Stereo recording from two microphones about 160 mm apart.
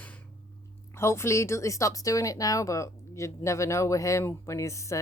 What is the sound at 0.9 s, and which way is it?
Speech, 15° left (ahead or behind).